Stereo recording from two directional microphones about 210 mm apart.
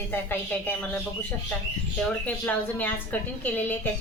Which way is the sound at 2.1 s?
5° left (ahead or behind).